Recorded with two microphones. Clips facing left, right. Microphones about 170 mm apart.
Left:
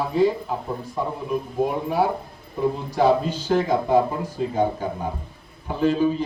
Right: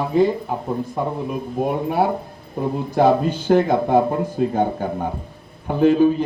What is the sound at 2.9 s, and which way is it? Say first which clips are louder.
Speech: right 4 dB; 55° right (ahead or behind).